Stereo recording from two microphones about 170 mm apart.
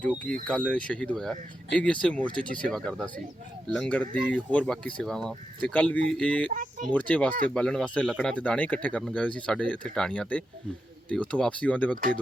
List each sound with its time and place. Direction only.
0.4 s speech: 5° left (ahead or behind)
6.5 s speech: 50° right (ahead or behind)
6.9 s speech: 10° left (ahead or behind)